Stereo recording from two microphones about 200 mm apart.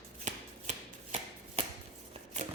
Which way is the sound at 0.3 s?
35° right (ahead or behind).